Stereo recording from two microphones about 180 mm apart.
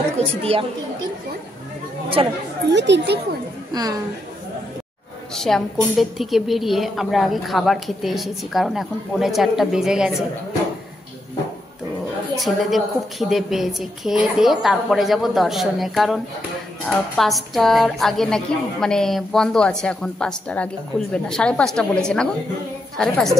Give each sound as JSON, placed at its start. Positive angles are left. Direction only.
{"t": 0.4, "sound": "speech", "side_deg": -35}
{"t": 2.7, "sound": "speech", "side_deg": -75}
{"t": 3.7, "sound": "a woman's voice", "side_deg": -20}
{"t": 5.3, "sound": "a woman's voice", "side_deg": 5}
{"t": 12.4, "sound": "a woman's voice", "side_deg": 0}